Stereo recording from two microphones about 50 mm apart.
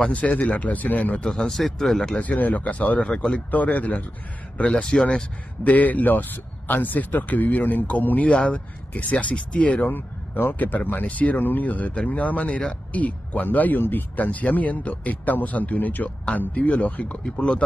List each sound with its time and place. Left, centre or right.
0.0 s speech: left
1.2 s speech: centre
2.1 s speech: left
3.0 s speech: centre
4.8 s speech: centre
5.6 s speech: left
9.8 s speech: left